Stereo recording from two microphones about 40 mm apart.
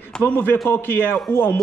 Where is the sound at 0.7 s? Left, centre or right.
Left.